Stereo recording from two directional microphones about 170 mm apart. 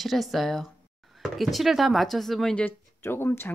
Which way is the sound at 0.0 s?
Centre (ahead or behind).